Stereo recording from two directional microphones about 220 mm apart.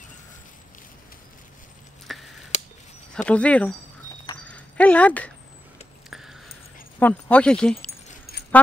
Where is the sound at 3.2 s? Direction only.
5° left (ahead or behind).